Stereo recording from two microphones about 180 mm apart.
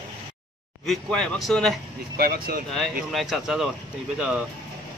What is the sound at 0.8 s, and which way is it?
Speech, 5° left (ahead or behind).